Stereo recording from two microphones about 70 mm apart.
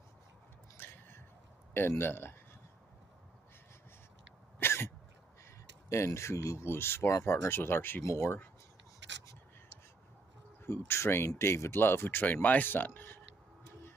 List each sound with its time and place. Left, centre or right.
0.7 s a sound: left
1.7 s speech: left
4.6 s cough: left
5.9 s speech: left
6.7 s speech: left
10.6 s speech: left